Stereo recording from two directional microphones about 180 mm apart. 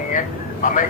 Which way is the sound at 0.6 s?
45° left (ahead or behind).